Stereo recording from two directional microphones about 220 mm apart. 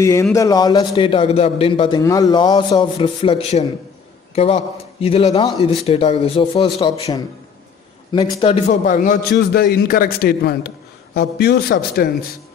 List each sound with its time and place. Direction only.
0.0 s a man's voice: 15° left (ahead or behind)
8.4 s a man's voice: 30° left (ahead or behind); by 12.1 s 45° left (ahead or behind)